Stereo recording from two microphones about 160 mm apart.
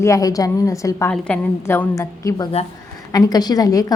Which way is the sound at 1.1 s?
5° left (ahead or behind).